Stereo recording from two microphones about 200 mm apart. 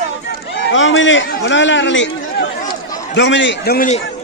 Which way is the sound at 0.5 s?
70° left (ahead or behind).